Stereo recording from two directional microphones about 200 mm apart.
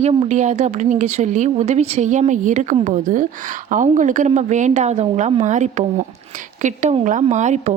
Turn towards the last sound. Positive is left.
turn(degrees=-35)  # may be behind; listen again after turning